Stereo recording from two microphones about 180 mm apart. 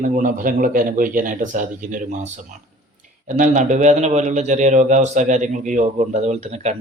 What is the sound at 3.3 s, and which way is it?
Speech, 45° right (ahead or behind).